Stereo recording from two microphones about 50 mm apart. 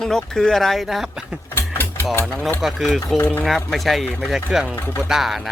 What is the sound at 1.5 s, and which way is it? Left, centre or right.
Mechanisms, left.